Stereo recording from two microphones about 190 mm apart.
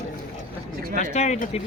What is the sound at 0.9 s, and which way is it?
Speech, 35° left (ahead or behind).